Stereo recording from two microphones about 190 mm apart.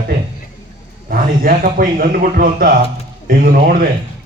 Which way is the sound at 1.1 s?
50° right (ahead or behind).